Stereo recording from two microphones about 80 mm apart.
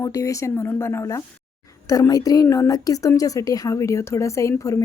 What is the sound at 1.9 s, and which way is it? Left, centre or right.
A woman's voice, left.